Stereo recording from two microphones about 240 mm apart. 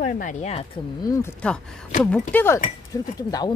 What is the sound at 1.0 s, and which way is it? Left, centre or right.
Speech, centre.